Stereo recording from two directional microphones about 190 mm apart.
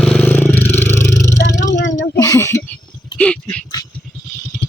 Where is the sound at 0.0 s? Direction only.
5° left (ahead or behind).